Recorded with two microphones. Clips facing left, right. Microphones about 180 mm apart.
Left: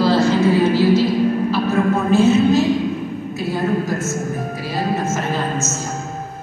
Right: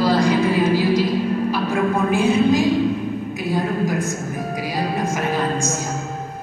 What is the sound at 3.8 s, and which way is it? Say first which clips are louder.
Music: left 1 dB; 15° right (ahead or behind).